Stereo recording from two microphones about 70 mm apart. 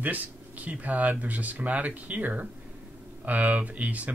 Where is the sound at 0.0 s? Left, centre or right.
Right.